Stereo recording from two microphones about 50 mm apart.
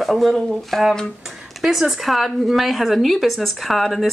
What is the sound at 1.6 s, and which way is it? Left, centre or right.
Speech, centre.